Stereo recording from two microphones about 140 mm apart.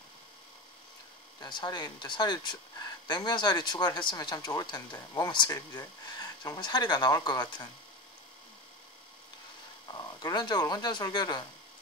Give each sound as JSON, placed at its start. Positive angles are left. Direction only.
{"t": 1.4, "sound": "speech", "side_deg": 30}
{"t": 9.9, "sound": "speech", "side_deg": 30}